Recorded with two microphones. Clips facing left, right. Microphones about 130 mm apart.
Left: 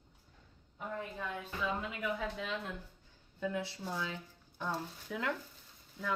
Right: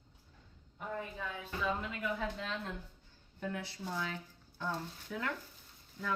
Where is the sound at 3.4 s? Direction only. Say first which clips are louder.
Left 3 dB; 20° left (ahead or behind).